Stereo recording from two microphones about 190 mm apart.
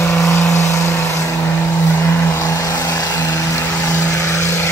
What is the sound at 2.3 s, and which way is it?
Vehicle, 15° left (ahead or behind).